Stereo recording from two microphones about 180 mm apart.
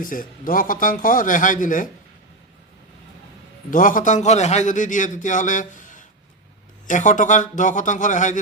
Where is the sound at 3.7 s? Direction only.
50° left (ahead or behind).